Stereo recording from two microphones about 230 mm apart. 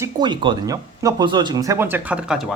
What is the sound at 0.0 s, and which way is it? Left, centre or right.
Speech, centre.